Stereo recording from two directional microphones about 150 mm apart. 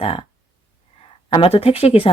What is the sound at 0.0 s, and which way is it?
Speech, 40° left (ahead or behind).